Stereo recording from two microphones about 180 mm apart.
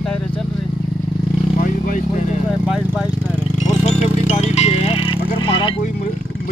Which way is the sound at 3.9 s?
40° left (ahead or behind).